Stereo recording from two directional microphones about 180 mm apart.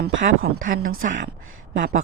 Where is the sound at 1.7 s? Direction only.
50° right (ahead or behind).